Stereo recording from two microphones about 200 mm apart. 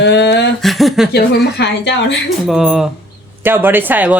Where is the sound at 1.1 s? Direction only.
55° left (ahead or behind).